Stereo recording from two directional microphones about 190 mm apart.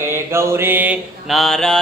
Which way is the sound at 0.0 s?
15° right (ahead or behind).